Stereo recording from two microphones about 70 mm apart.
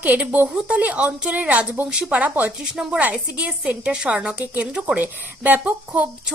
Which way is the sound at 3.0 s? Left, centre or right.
Right.